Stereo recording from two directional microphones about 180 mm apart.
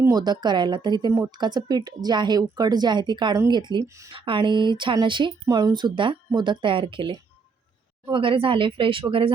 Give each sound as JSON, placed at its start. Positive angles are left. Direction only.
{"t": 0.0, "sound": "speech", "side_deg": -20}
{"t": 4.1, "sound": "speech", "side_deg": -30}